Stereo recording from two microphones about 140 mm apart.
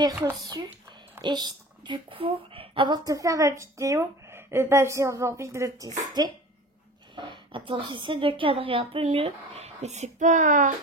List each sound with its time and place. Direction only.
0.0 s a woman's voice: 25° right (ahead or behind); by 10.7 s 65° right (ahead or behind)